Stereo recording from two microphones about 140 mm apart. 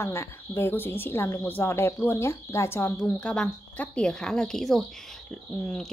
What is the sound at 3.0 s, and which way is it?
Speech, 5° left (ahead or behind).